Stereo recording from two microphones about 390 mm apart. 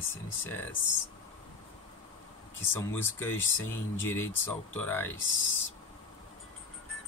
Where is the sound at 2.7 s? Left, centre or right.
Centre.